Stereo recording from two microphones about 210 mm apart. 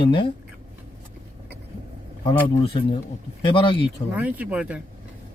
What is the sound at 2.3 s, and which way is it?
Speech, 25° left (ahead or behind).